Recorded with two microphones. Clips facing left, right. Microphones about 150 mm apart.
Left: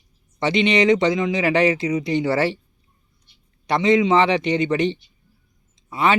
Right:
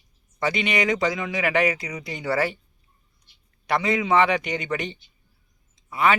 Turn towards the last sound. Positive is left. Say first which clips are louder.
# left 2 dB
turn(degrees=25)  # may be behind; listen again after turning